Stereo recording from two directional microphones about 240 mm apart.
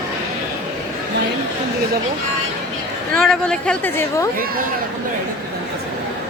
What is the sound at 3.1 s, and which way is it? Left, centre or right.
A woman's voice, centre.